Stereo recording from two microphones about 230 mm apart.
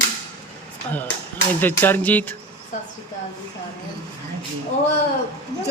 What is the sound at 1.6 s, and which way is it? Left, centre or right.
Speech, centre.